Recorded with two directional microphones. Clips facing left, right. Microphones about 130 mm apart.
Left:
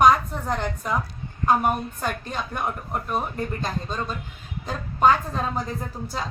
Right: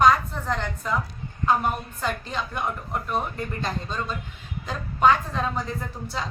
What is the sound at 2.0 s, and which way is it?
Speech, 50° left (ahead or behind).